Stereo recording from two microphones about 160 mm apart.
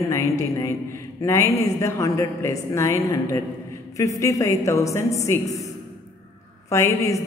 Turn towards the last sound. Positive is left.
turn(degrees=20)  # may be behind; listen again after turning